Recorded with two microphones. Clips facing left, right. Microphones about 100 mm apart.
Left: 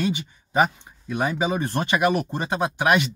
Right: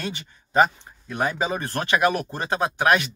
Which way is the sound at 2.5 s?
15° left (ahead or behind).